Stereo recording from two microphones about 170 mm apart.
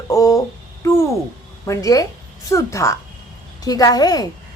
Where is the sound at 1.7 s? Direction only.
20° left (ahead or behind).